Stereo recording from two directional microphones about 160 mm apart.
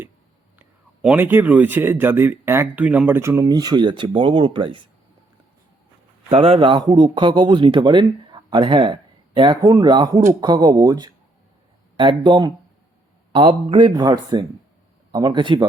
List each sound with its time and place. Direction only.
1.0 s speech: 10° right (ahead or behind); by 4.8 s 30° right (ahead or behind)
6.3 s speech: 35° right (ahead or behind)